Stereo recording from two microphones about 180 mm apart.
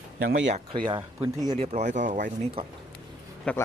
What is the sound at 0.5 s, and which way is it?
Speech, 30° right (ahead or behind).